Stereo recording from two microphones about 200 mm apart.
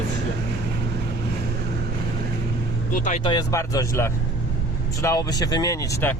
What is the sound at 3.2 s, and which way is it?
Speech, 15° left (ahead or behind).